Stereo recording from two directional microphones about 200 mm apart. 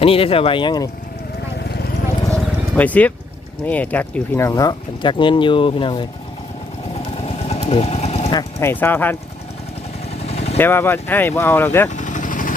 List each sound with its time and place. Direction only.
0.0 s speech: 30° left (ahead or behind)
2.3 s vehicle: 5° left (ahead or behind)
3.7 s speech: 5° left (ahead or behind); by 6.1 s 25° left (ahead or behind)
7.2 s vehicle: 30° left (ahead or behind)
8.4 s speech: 15° left (ahead or behind)
10.2 s vehicle: 30° left (ahead or behind)
10.6 s speech: 10° left (ahead or behind)
11.9 s vehicle: 40° left (ahead or behind)